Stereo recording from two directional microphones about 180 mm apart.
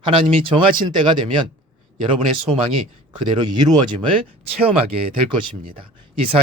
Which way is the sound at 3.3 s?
25° right (ahead or behind).